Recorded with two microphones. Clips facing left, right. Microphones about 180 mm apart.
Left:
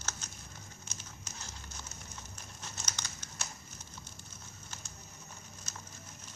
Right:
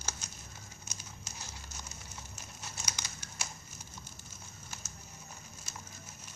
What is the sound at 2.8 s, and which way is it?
Crumpling, 10° right (ahead or behind).